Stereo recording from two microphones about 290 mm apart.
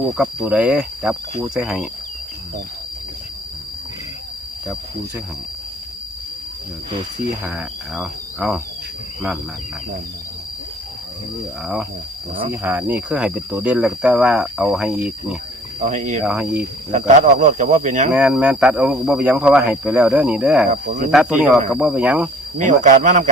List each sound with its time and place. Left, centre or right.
0.1 s speech: centre
7.4 s cricket: centre
11.3 s speech: centre
15.8 s speech: right
16.2 s speech: centre
16.9 s speech: right
18.1 s speech: centre
20.7 s speech: right
21.1 s speech: centre
22.5 s speech: right